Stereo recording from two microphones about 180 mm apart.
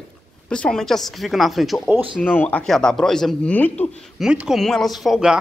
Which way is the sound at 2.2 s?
10° left (ahead or behind).